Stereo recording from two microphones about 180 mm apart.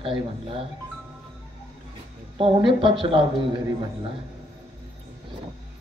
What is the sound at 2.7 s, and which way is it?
Speech, 30° right (ahead or behind).